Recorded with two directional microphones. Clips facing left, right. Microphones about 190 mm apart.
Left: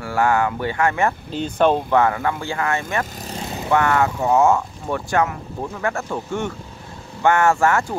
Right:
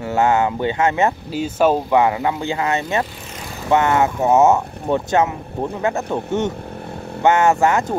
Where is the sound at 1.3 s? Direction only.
5° right (ahead or behind).